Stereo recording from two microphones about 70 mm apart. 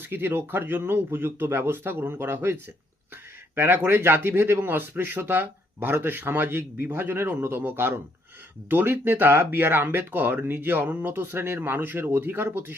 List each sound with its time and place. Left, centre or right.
0.0 s speech: right